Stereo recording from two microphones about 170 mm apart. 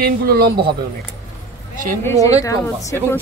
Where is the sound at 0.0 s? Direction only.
65° right (ahead or behind).